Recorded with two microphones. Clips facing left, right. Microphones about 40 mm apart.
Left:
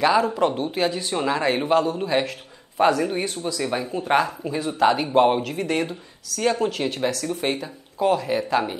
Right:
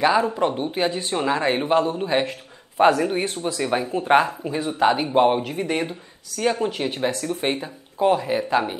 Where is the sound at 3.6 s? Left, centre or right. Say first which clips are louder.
Right 4 dB; centre.